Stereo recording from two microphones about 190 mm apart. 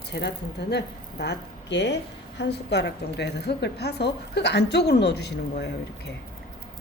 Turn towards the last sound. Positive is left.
turn(degrees=60)  # may be behind; listen again after turning